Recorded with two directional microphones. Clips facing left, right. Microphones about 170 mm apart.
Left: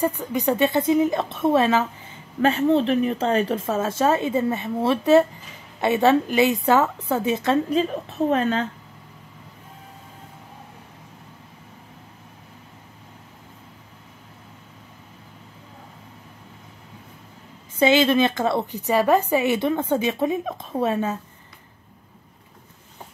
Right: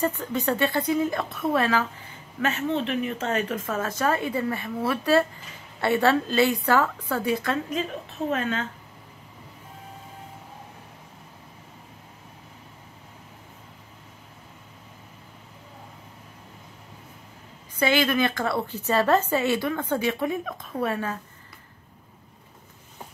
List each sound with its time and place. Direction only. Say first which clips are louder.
0.0 s a woman's voice: left 3 dB; 10° left (ahead or behind)
2.4 s a woman's voice: left 7 dB; 35° left (ahead or behind)
17.7 s a woman's voice: left 5 dB; 20° left (ahead or behind)